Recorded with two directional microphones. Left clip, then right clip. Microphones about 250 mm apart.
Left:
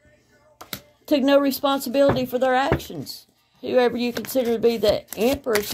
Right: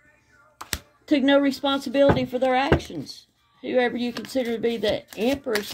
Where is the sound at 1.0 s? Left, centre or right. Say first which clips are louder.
Left 2 dB; left.